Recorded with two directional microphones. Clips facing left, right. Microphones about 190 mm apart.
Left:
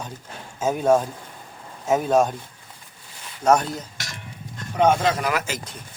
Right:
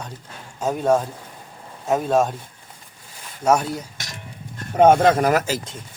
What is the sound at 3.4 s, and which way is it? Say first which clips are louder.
Speech: even; 5° right (ahead or behind).